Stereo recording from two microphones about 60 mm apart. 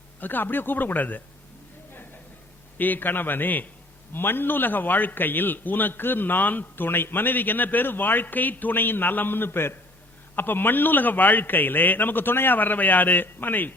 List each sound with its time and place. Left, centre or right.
0.2 s a man's voice: left
2.7 s a man's voice: left